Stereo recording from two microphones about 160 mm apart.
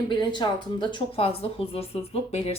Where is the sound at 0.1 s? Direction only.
30° left (ahead or behind).